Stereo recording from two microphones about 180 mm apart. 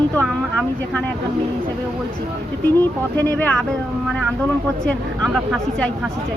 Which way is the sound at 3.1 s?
10° left (ahead or behind).